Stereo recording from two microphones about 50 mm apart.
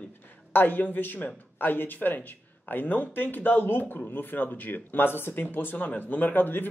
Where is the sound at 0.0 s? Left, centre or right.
Left.